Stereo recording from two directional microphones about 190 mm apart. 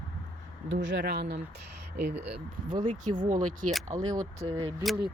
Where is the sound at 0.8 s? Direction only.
55° right (ahead or behind).